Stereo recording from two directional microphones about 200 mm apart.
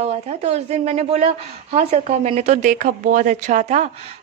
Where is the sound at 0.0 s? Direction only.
30° right (ahead or behind).